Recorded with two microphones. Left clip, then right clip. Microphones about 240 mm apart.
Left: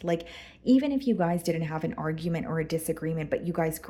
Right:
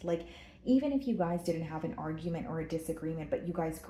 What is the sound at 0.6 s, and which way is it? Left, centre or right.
Speech, left.